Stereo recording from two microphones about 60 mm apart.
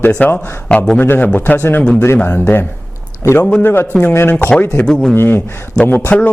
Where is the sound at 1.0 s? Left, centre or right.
Left.